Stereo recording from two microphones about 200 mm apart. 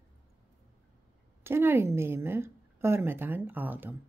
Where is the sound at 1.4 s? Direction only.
10° right (ahead or behind).